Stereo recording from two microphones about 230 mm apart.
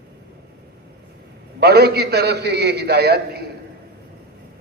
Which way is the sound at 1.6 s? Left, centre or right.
Right.